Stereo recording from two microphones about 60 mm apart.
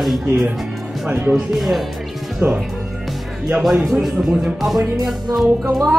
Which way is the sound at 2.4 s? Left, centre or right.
Right.